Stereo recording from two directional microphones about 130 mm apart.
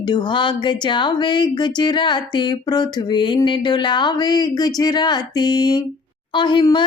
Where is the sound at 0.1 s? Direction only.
35° left (ahead or behind).